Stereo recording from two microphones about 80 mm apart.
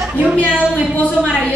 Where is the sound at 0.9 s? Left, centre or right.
Centre.